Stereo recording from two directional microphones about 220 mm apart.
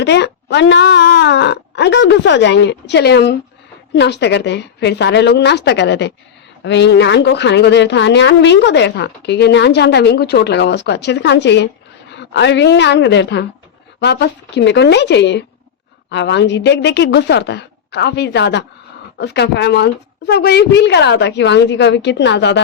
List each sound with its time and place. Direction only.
0.0 s a woman's voice: 50° left (ahead or behind)